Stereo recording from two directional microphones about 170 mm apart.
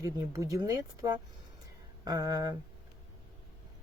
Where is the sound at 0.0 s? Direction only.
20° right (ahead or behind).